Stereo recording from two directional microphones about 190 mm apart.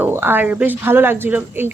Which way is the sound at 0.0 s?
10° right (ahead or behind).